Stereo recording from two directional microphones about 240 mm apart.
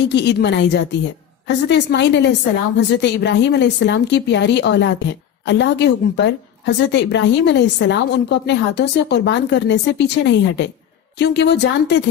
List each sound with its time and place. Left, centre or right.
0.1 s a woman's voice: left